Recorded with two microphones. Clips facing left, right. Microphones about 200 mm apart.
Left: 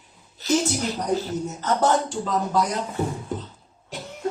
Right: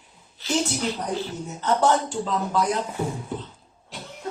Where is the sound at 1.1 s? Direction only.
40° left (ahead or behind).